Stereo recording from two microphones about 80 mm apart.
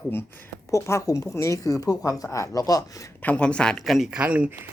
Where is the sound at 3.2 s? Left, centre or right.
Centre.